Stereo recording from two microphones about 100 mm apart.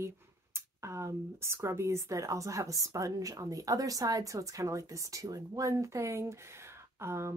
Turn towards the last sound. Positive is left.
turn(degrees=-25)  # may be behind; listen again after turning